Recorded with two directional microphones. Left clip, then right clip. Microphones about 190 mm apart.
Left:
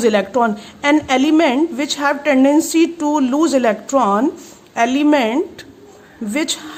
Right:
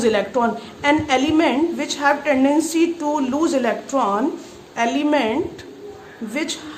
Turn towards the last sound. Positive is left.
turn(degrees=50)  # may be behind; listen again after turning